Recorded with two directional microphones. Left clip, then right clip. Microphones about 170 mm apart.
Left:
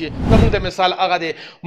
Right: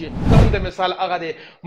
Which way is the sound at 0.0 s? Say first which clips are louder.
Left 2 dB; 35° left (ahead or behind).